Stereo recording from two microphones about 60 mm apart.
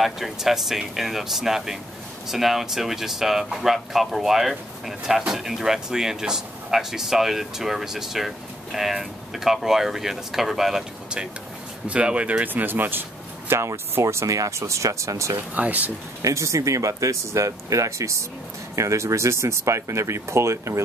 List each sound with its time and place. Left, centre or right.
0.0 s speech: centre; by 13.0 s right
13.5 s speech: right
15.5 s speech: right
16.2 s speech: right